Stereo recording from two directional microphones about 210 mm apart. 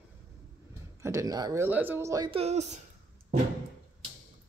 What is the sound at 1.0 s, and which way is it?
Speech, 15° right (ahead or behind).